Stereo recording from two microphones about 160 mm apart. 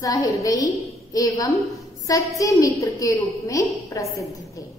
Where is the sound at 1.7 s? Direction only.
20° left (ahead or behind).